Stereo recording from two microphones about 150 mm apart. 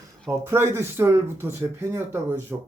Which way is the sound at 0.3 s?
20° right (ahead or behind).